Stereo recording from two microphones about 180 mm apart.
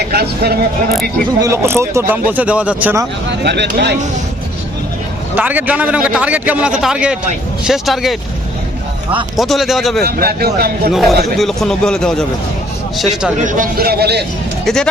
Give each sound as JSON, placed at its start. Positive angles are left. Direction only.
{"t": 0.1, "sound": "speech", "side_deg": -60}
{"t": 1.4, "sound": "a man's voice", "side_deg": -15}
{"t": 3.2, "sound": "speech", "side_deg": -70}
{"t": 5.3, "sound": "a man's voice", "side_deg": -10}
{"t": 9.3, "sound": "a man's voice", "side_deg": 0}
{"t": 10.0, "sound": "speech", "side_deg": -60}
{"t": 11.3, "sound": "a man's voice", "side_deg": 0}
{"t": 13.4, "sound": "speech", "side_deg": -45}
{"t": 14.6, "sound": "speech", "side_deg": 5}